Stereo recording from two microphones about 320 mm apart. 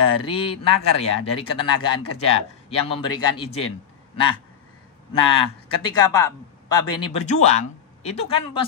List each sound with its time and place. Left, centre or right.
0.2 s speech: centre
5.1 s a man's voice: centre
7.2 s speech: left